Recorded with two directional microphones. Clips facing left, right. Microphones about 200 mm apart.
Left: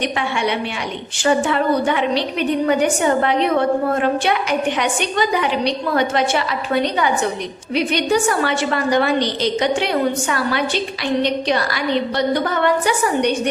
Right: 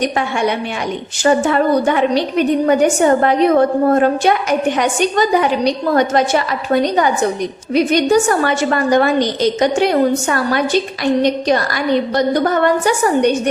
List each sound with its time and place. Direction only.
0.0 s a woman's voice: 45° right (ahead or behind)